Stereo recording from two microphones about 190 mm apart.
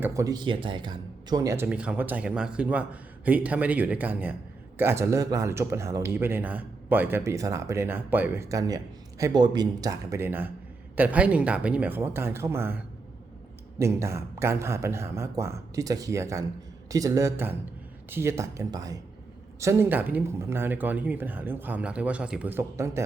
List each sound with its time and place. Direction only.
0.0 s speech: 15° right (ahead or behind)